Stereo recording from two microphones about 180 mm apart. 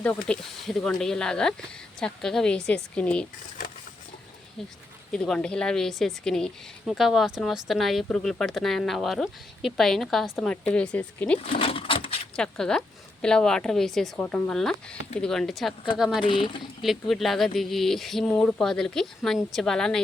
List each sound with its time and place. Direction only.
0.0 s a woman's voice: 5° left (ahead or behind)
5.1 s a woman's voice: 5° left (ahead or behind)
11.4 s a sound: 30° left (ahead or behind)
12.4 s a woman's voice: 5° left (ahead or behind)
16.2 s speech: 30° left (ahead or behind)
16.8 s a woman's voice: centre (ahead or behind)